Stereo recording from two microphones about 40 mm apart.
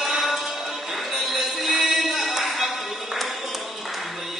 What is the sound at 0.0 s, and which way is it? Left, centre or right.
Music, centre.